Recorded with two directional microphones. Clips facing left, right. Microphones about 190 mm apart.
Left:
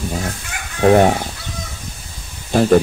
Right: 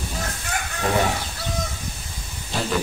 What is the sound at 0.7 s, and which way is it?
Speech, 55° left (ahead or behind).